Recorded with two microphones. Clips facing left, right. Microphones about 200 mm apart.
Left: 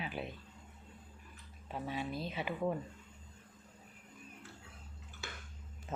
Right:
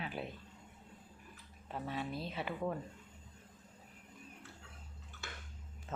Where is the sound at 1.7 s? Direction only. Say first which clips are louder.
Left 1 dB; 5° left (ahead or behind).